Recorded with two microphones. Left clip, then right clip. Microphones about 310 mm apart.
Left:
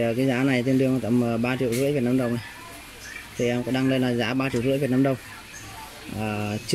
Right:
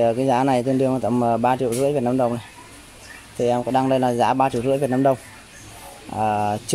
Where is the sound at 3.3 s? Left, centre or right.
Right.